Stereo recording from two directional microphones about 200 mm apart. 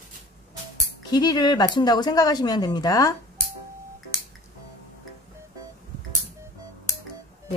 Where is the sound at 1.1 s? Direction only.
20° left (ahead or behind).